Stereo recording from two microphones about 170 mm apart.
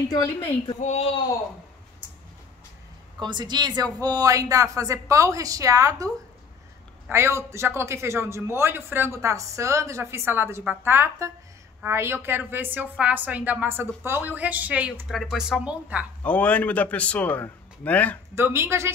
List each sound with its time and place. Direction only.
0.7 s speech: 40° left (ahead or behind)
3.2 s speech: 25° right (ahead or behind)
7.1 s a man's voice: 15° right (ahead or behind)
16.2 s a man's voice: 10° left (ahead or behind)
18.3 s a man's voice: 15° right (ahead or behind)